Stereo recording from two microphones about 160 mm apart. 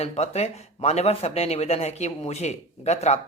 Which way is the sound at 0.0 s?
40° left (ahead or behind).